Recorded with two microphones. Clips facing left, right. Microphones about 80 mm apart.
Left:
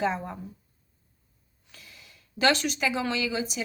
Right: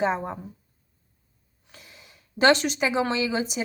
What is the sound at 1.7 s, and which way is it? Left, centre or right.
Speech, right.